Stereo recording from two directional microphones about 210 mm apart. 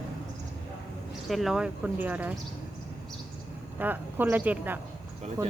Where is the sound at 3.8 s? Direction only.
10° right (ahead or behind).